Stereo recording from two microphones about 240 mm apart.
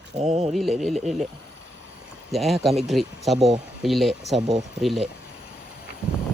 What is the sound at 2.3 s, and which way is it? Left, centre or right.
Speech, centre.